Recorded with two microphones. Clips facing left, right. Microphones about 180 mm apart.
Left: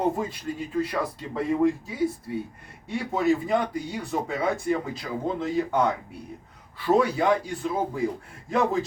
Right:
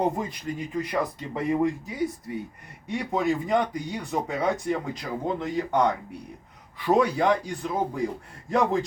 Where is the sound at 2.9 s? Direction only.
5° left (ahead or behind).